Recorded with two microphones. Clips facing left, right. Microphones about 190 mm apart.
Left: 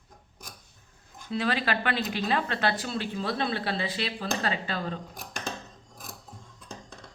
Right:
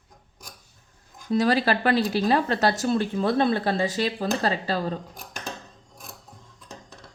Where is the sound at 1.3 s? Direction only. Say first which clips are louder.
Right 7 dB; 40° right (ahead or behind).